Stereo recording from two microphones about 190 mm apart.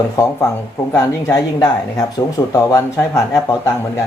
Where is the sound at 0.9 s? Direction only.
15° left (ahead or behind).